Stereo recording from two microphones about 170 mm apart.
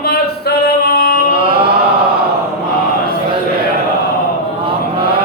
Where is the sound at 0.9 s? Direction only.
65° left (ahead or behind).